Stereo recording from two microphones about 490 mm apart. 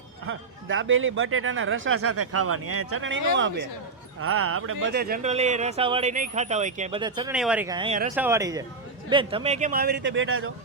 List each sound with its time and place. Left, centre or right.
0.3 s speech: right